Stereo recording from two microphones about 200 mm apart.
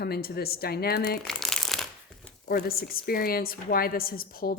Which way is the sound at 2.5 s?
50° left (ahead or behind).